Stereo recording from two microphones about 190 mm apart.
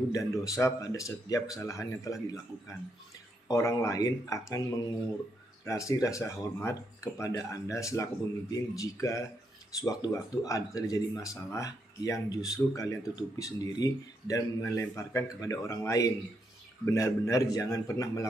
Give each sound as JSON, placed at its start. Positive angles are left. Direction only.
{"t": 0.1, "sound": "speech", "side_deg": 15}
{"t": 3.4, "sound": "speech", "side_deg": 15}